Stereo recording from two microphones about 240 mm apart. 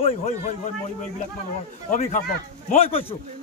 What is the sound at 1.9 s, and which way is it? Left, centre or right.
A man's voice, left.